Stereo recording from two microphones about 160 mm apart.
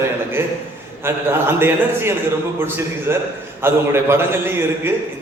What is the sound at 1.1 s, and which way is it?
A man's voice, 15° right (ahead or behind).